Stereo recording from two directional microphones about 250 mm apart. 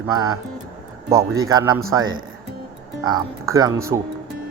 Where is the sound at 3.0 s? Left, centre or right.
Centre.